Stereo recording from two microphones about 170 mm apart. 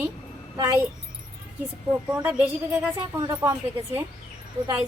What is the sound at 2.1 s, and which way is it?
Speech, 10° right (ahead or behind).